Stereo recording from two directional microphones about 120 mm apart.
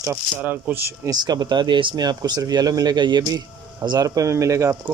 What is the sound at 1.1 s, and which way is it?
Speech, 35° right (ahead or behind).